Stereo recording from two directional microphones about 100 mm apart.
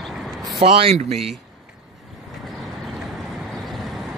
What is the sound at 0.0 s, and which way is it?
Vehicle, centre (ahead or behind).